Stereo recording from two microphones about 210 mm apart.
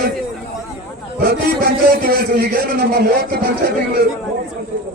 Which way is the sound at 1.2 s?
45° right (ahead or behind).